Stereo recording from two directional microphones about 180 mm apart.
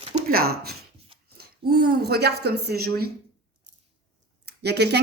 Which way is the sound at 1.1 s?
30° right (ahead or behind).